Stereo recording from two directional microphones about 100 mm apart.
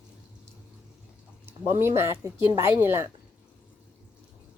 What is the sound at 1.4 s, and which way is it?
A woman's voice, 25° right (ahead or behind).